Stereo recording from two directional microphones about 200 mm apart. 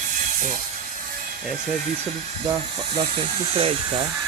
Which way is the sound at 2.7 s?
30° right (ahead or behind).